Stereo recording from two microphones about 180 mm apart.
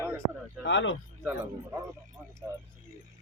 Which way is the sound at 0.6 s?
90° left.